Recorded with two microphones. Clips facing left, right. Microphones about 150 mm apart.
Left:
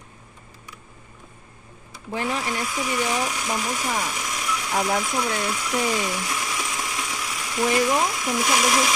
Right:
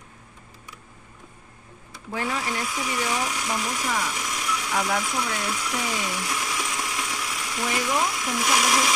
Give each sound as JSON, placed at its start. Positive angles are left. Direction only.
{"t": 2.0, "sound": "speech", "side_deg": 20}
{"t": 2.6, "sound": "speech", "side_deg": 0}
{"t": 3.0, "sound": "speech", "side_deg": 15}
{"t": 3.8, "sound": "speech", "side_deg": 20}
{"t": 4.2, "sound": "a sound", "side_deg": 5}
{"t": 4.6, "sound": "speech", "side_deg": 20}
{"t": 5.5, "sound": "ratchet", "side_deg": 5}
{"t": 7.6, "sound": "speech", "side_deg": 20}
{"t": 8.4, "sound": "speech", "side_deg": 10}
{"t": 8.6, "sound": "speech", "side_deg": 0}